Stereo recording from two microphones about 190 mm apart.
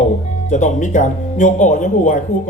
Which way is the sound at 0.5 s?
40° left (ahead or behind).